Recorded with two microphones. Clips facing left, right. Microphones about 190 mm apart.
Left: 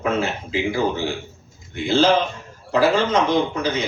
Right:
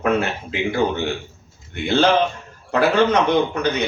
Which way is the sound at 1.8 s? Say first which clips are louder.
Even; 65° right (ahead or behind).